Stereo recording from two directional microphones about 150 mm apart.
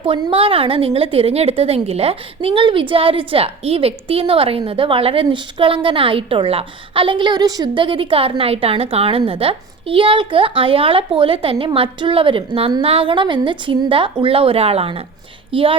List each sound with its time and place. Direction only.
0.0 s a woman's voice: 35° right (ahead or behind)